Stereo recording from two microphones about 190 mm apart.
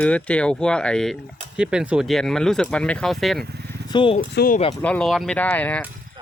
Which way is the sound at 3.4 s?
60° right (ahead or behind).